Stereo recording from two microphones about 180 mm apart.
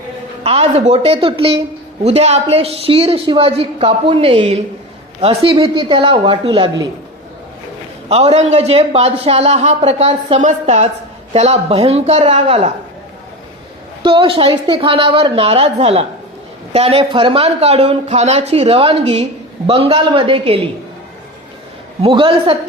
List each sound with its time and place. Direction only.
0.4 s a woman's voice: 35° right (ahead or behind)
8.1 s a woman's voice: 35° right (ahead or behind)
14.0 s a woman's voice: 30° right (ahead or behind)
22.0 s a woman's voice: 30° right (ahead or behind)